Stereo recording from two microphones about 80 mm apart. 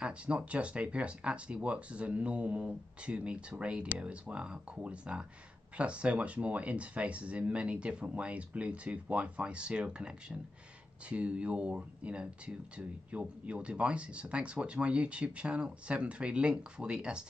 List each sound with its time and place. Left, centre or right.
0.0 s speech: centre